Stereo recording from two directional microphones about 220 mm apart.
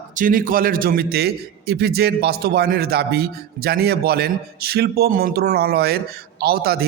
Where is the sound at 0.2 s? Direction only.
40° right (ahead or behind).